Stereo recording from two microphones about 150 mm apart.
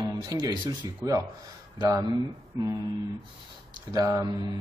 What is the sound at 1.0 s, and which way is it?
Speech, 20° right (ahead or behind).